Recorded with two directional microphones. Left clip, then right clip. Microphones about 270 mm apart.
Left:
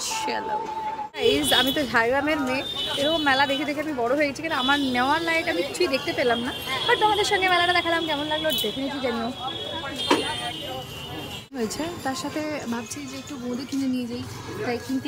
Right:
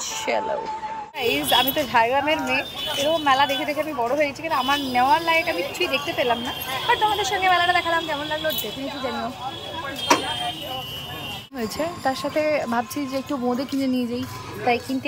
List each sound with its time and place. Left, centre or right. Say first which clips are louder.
0.1 s a sound: right 3 dB; centre
1.2 s speech: even; centre
12.0 s speech: right 9 dB; centre